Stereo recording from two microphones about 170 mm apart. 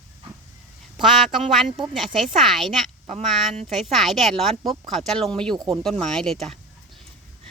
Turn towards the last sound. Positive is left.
turn(degrees=0)  # may be behind; listen again after turning